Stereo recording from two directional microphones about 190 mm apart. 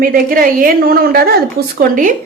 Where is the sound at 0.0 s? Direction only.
50° right (ahead or behind).